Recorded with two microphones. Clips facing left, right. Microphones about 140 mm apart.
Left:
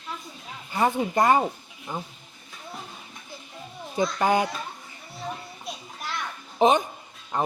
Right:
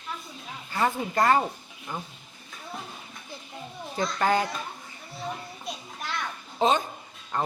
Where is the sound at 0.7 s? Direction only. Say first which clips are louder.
Left 3 dB; 20° left (ahead or behind).